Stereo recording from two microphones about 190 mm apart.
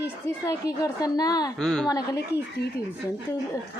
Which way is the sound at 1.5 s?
5° left (ahead or behind).